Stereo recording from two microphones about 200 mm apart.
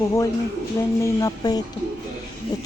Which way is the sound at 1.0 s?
20° left (ahead or behind).